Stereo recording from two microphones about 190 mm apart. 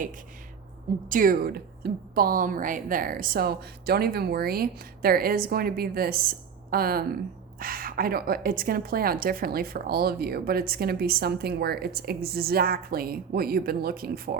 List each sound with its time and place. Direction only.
1.0 s a woman's voice: 45° right (ahead or behind)